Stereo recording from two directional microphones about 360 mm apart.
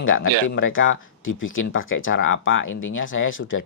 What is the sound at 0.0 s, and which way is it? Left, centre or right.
Speech, left.